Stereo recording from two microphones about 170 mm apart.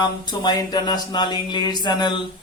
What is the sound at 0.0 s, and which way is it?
Mantra, 25° left (ahead or behind).